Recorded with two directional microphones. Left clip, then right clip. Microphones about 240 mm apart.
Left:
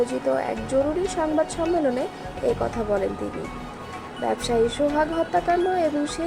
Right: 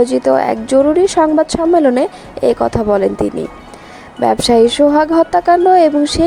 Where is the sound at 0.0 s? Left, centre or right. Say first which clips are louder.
Right 12 dB; right.